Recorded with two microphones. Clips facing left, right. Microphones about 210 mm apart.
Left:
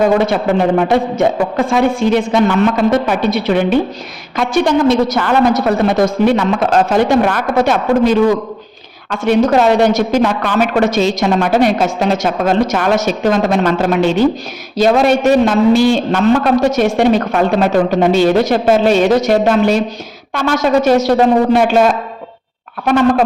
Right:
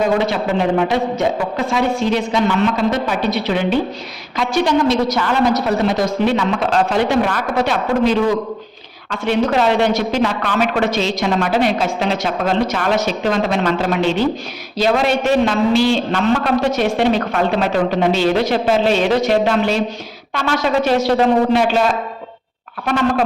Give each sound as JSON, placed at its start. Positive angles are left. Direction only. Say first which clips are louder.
{"t": 0.8, "sound": "a woman's voice", "louder": "left 4 dB", "side_deg": 50}
{"t": 9.1, "sound": "a woman's voice", "louder": "left 5 dB", "side_deg": 45}